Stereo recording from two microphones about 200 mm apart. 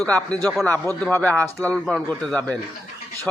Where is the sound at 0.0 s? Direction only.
5° left (ahead or behind).